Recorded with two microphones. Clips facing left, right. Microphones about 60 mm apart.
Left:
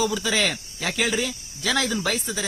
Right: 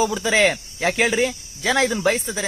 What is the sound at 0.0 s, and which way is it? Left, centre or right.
Speech, right.